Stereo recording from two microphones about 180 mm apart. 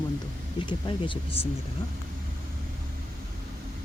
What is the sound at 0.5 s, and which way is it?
Speech, 25° left (ahead or behind).